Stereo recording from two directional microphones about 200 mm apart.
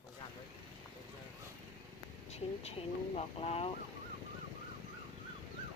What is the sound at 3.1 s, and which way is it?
Speech, 30° left (ahead or behind).